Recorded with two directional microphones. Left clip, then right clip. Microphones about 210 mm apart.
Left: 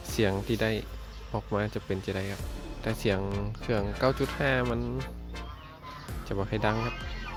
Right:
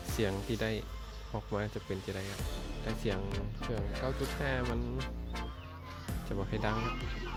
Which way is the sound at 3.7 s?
30° left (ahead or behind).